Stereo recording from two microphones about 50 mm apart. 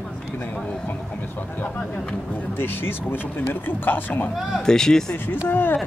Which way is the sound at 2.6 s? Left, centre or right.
Left.